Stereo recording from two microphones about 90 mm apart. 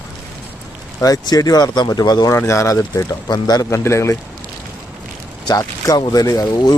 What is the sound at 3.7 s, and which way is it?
Speech, 30° left (ahead or behind).